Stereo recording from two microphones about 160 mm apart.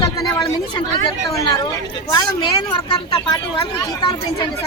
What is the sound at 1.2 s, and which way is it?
Speech, 20° left (ahead or behind).